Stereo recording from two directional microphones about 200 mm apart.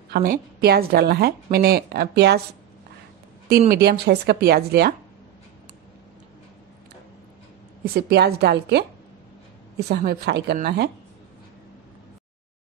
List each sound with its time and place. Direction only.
0.1 s a woman's voice: 45° right (ahead or behind)
3.4 s a woman's voice: 50° right (ahead or behind)
7.8 s a woman's voice: 50° right (ahead or behind)